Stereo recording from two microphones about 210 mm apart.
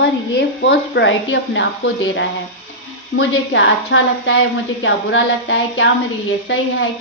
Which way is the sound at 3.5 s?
60° left (ahead or behind).